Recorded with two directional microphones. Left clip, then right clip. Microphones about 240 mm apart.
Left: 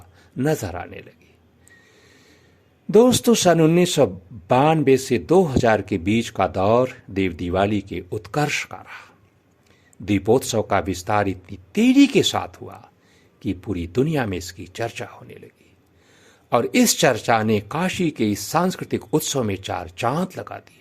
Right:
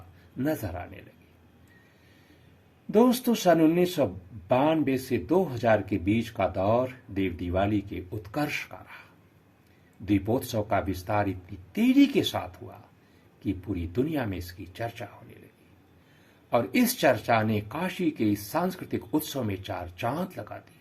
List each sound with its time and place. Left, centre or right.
0.3 s speech: left
2.9 s speech: left
10.1 s speech: left
16.5 s speech: left